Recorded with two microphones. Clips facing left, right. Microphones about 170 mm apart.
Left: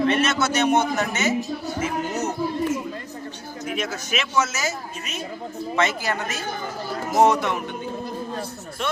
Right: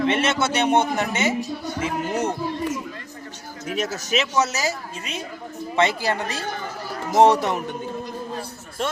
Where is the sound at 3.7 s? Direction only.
40° right (ahead or behind).